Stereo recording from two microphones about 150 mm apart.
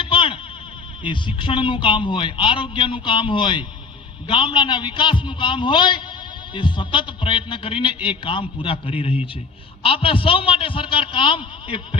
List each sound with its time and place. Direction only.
0.0 s music: 35° left (ahead or behind)
1.0 s a man's voice: 35° left (ahead or behind)